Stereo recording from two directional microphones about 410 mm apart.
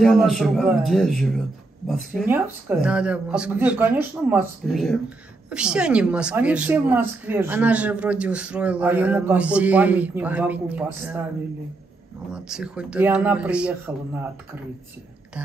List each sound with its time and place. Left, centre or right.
0.0 s a woman's voice: centre
12.3 s a woman's voice: centre